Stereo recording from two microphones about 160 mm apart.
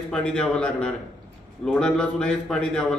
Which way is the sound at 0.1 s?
5° left (ahead or behind).